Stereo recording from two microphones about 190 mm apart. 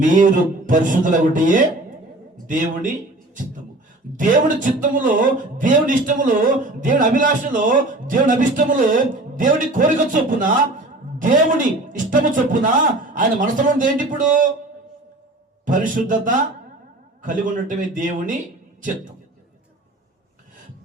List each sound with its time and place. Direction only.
0.0 s a man's voice: 45° right (ahead or behind)
4.2 s a man's voice: 45° right (ahead or behind)
15.6 s a man's voice: 45° right (ahead or behind)